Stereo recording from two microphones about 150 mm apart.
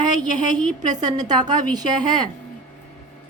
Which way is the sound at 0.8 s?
25° right (ahead or behind).